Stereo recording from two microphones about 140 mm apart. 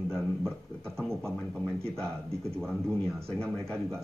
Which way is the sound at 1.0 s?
5° left (ahead or behind).